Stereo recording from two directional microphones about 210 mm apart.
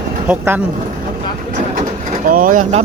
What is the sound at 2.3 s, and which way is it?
Speech, 40° right (ahead or behind).